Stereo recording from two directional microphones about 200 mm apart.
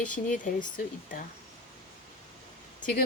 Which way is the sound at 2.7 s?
40° left (ahead or behind).